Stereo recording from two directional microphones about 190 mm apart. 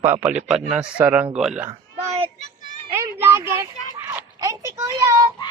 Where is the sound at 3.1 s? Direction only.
15° right (ahead or behind).